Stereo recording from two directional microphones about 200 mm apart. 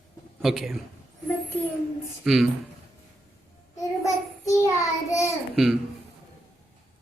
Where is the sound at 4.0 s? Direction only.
15° left (ahead or behind).